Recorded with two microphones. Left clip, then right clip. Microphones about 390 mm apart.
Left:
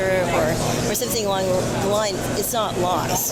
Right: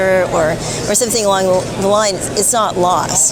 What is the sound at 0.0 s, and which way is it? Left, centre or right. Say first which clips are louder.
Vehicle: right 7 dB; right.